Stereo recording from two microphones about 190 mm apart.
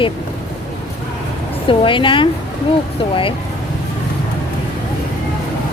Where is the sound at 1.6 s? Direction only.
25° left (ahead or behind).